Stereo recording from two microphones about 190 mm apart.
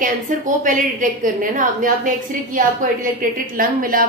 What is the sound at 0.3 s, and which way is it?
A woman's voice, 40° right (ahead or behind).